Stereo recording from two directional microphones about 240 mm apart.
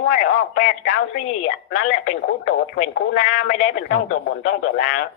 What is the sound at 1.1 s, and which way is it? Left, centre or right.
Speech, left.